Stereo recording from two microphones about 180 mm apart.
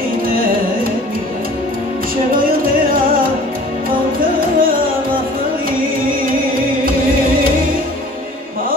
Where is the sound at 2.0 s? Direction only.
50° right (ahead or behind).